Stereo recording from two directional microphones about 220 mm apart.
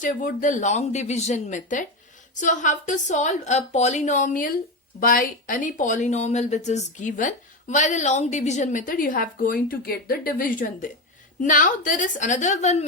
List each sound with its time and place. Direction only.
0.0 s speech: 40° left (ahead or behind)